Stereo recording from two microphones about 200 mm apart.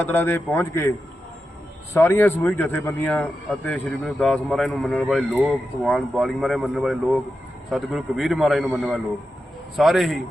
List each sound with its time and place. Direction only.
0.0 s a man's voice: 10° left (ahead or behind)